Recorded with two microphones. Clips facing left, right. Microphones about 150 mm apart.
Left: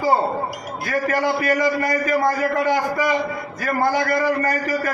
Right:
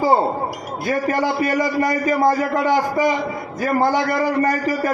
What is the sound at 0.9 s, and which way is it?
A man's voice, 20° right (ahead or behind).